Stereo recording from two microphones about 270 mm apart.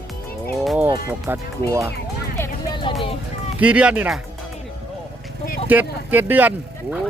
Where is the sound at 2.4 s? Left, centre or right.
Centre.